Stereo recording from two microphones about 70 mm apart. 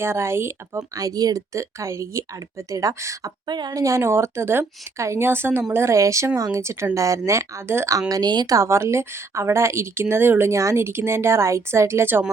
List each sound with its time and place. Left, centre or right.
0.0 s a woman's voice: right
0.8 s speech: right
3.4 s a woman's voice: right
3.8 s a woman's voice: right
5.7 s speech: right
7.9 s speech: right
8.5 s a woman's voice: right
10.5 s a woman's voice: right